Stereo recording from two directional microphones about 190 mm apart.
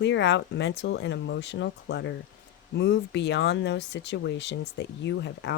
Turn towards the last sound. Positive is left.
turn(degrees=65)  # may be behind; listen again after turning